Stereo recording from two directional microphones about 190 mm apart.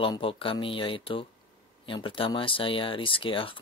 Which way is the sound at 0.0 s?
30° left (ahead or behind).